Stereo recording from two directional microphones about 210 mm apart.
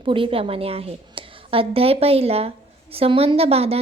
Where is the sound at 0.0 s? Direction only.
25° right (ahead or behind).